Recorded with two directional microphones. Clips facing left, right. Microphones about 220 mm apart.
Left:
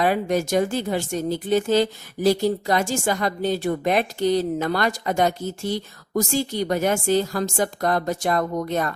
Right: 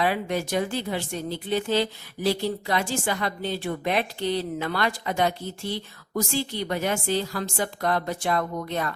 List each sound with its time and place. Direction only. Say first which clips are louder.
0.0 s speech: left 4 dB; 45° left (ahead or behind)